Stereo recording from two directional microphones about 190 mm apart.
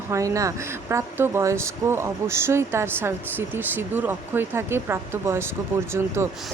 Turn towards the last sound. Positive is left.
turn(degrees=-15)  # may be behind; listen again after turning